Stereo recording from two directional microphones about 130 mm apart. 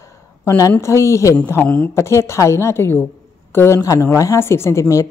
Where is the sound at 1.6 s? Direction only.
10° left (ahead or behind).